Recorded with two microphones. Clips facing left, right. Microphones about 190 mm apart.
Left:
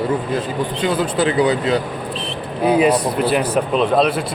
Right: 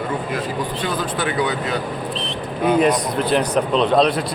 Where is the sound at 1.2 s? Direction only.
30° left (ahead or behind).